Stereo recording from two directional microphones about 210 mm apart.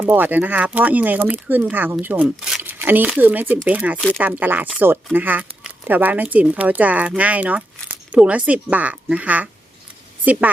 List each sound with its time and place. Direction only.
0.0 s speech: 10° right (ahead or behind)
3.9 s speech: 5° left (ahead or behind)
4.2 s speech: 10° right (ahead or behind)